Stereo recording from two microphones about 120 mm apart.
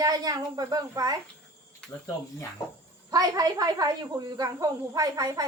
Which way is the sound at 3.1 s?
30° right (ahead or behind).